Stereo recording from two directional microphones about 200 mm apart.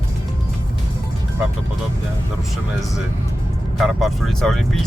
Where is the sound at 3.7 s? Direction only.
Centre (ahead or behind).